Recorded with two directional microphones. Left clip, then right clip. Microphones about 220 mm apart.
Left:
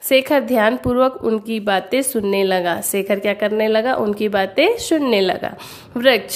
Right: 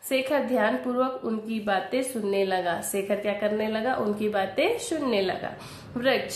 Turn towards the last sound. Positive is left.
turn(degrees=45)  # may be behind; listen again after turning